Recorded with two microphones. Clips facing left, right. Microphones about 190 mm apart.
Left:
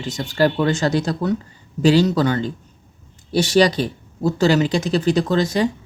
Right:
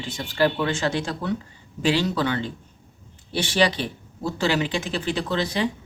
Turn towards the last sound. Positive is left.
turn(degrees=45)  # may be behind; listen again after turning